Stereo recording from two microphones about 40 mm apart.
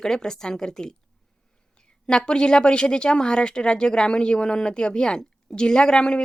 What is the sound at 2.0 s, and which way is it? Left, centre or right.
Speech, left.